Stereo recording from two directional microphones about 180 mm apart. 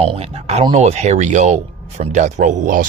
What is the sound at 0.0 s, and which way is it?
Speech, 35° right (ahead or behind).